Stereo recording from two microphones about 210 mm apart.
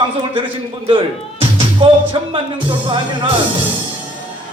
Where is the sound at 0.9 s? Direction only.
25° right (ahead or behind).